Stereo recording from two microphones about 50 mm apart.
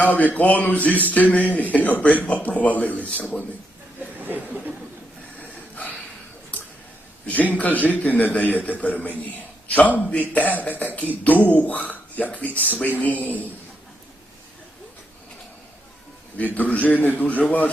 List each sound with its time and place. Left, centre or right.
0.0 s a man's voice: left
4.0 s speech: right
5.4 s a sound: left
7.3 s a man's voice: left
16.6 s a man's voice: left